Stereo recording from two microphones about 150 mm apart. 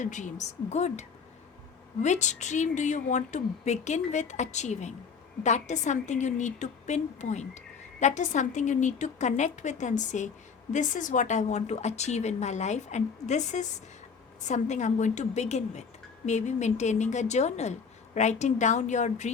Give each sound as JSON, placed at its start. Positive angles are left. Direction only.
{"t": 0.0, "sound": "a woman's voice", "side_deg": 55}